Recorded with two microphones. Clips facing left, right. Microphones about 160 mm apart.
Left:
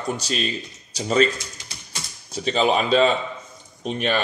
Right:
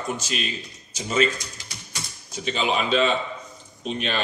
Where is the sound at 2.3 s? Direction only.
35° left (ahead or behind).